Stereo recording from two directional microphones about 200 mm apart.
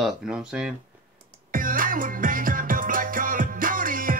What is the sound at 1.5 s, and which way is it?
Music, 45° right (ahead or behind).